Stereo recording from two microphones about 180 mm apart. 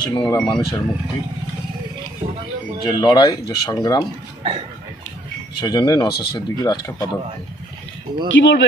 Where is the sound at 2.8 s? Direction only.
25° left (ahead or behind).